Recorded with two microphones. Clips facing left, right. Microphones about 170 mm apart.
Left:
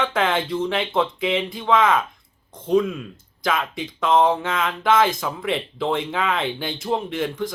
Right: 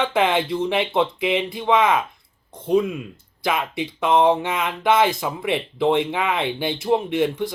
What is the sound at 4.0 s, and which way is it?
Speech, 15° right (ahead or behind).